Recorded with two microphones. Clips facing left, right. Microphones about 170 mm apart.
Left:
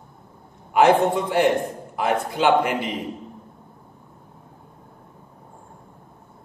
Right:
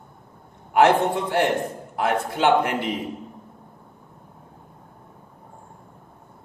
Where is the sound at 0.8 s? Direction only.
60° right (ahead or behind).